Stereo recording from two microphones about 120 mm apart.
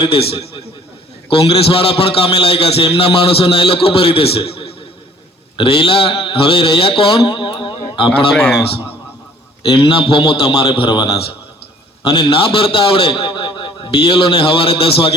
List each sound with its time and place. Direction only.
0.0 s a man's voice: 50° left (ahead or behind)
8.3 s a man's voice: centre (ahead or behind)
9.6 s a man's voice: 45° left (ahead or behind)